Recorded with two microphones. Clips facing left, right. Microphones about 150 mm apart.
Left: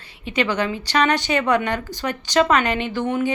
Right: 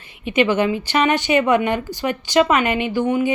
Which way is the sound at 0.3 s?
20° right (ahead or behind).